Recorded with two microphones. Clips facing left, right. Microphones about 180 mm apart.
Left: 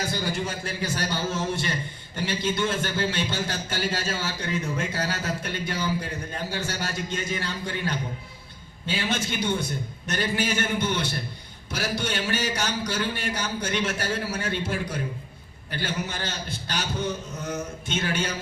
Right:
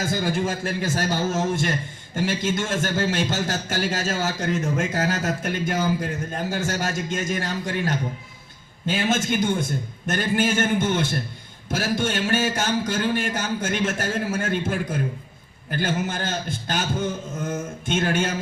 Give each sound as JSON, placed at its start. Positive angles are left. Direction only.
{"t": 0.0, "sound": "a man's voice", "side_deg": -50}